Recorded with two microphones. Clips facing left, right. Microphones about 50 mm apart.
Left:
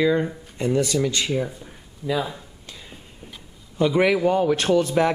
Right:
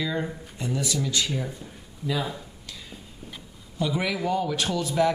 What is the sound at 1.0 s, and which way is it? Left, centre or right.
Speech, left.